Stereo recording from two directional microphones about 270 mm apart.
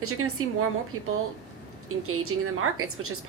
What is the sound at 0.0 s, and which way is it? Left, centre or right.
A woman's voice, right.